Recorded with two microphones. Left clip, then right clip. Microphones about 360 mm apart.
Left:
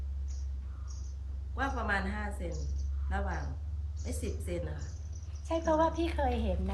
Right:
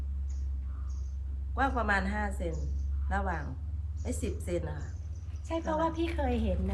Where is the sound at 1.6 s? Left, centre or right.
Centre.